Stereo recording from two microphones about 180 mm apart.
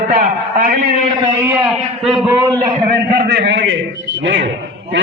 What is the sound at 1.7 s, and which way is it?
Speech, centre (ahead or behind).